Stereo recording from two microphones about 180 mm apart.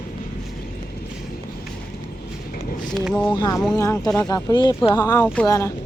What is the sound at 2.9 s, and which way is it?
Speech, 5° left (ahead or behind).